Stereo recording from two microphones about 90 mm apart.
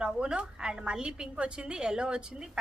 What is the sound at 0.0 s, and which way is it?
A woman's voice, 10° right (ahead or behind).